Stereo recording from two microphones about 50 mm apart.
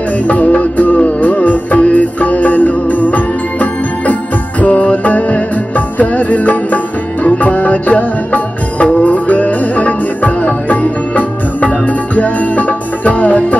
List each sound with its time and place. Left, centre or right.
0.3 s music: left